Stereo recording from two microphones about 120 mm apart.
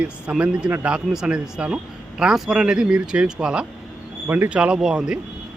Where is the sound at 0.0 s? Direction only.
10° right (ahead or behind).